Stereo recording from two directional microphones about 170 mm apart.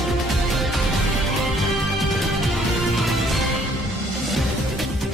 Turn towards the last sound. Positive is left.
turn(degrees=0)  # may be behind; listen again after turning